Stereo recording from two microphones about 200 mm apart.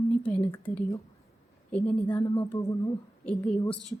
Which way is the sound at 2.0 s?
10° left (ahead or behind).